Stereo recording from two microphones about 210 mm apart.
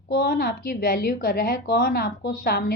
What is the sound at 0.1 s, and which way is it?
A woman's voice, 45° left (ahead or behind).